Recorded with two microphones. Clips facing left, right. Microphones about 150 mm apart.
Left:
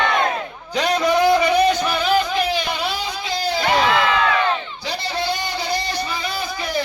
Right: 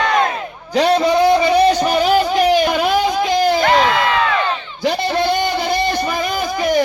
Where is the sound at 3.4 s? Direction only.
50° right (ahead or behind).